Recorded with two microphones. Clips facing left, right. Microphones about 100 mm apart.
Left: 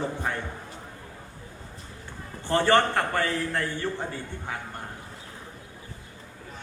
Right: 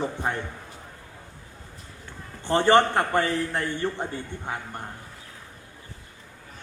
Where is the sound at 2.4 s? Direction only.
20° right (ahead or behind).